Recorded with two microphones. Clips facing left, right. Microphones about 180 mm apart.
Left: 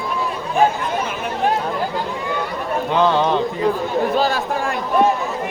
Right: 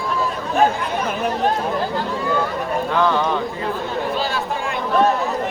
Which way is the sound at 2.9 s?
20° left (ahead or behind).